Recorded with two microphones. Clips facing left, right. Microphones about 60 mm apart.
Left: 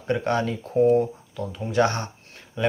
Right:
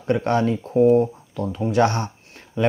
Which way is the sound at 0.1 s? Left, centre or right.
Right.